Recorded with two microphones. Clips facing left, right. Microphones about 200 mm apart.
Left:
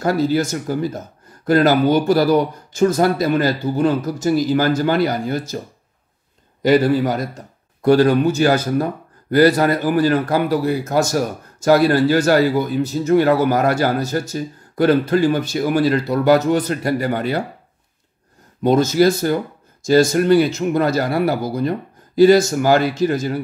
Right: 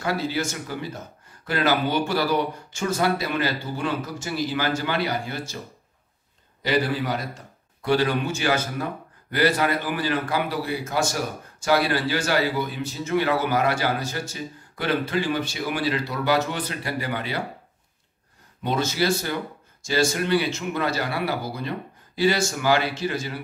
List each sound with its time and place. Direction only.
0.0 s speech: 40° left (ahead or behind)
6.6 s a man's voice: 45° left (ahead or behind)
18.6 s a man's voice: 45° left (ahead or behind)